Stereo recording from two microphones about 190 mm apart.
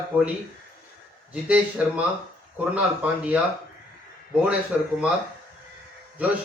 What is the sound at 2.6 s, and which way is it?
Speech, 5° right (ahead or behind).